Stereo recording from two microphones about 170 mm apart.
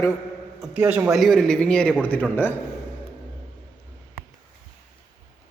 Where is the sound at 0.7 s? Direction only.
10° right (ahead or behind).